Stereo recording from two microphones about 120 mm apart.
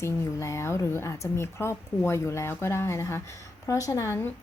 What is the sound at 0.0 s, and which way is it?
A woman's voice, 25° left (ahead or behind).